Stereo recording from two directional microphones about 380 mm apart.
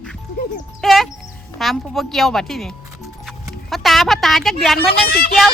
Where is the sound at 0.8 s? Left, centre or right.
Centre.